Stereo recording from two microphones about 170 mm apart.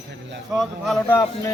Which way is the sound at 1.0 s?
15° left (ahead or behind).